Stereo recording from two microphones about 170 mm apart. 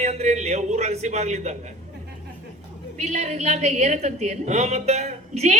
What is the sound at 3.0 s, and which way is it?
A woman's voice, 40° right (ahead or behind).